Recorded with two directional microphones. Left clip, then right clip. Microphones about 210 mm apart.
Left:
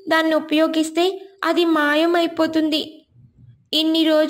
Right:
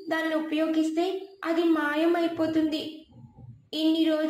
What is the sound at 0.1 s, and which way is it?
A woman's voice, 45° left (ahead or behind).